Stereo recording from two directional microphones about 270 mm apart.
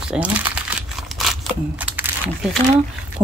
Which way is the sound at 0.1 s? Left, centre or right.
Centre.